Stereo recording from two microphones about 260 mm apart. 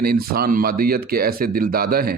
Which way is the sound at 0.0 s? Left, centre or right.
Right.